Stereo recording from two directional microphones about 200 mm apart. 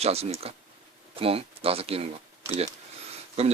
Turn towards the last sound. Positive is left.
turn(degrees=-30)  # may be behind; listen again after turning